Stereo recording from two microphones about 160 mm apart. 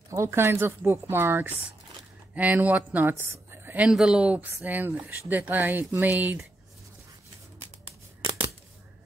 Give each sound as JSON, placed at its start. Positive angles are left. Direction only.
{"t": 0.1, "sound": "speech", "side_deg": -15}